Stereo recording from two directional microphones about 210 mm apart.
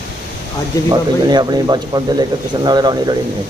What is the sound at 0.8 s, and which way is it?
Speech, 20° right (ahead or behind).